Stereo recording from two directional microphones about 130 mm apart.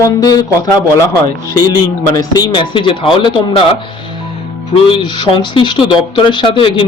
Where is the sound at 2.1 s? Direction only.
35° left (ahead or behind).